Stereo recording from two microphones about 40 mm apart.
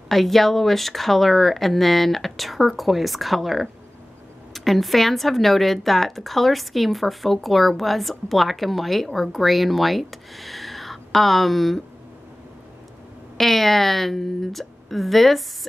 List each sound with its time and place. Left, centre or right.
0.1 s a woman's voice: centre
13.4 s a woman's voice: centre